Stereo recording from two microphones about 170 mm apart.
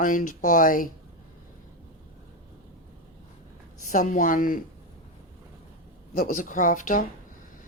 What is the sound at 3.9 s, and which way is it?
Speech, 45° left (ahead or behind).